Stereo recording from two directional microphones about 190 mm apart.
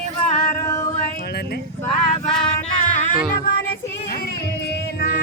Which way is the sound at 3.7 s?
50° left (ahead or behind).